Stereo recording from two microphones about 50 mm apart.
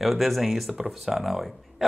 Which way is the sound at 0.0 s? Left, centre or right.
Centre.